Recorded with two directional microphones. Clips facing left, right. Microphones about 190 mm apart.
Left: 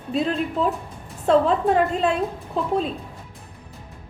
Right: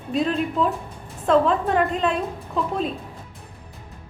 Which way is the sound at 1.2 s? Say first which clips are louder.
Left 1 dB; 35° left (ahead or behind).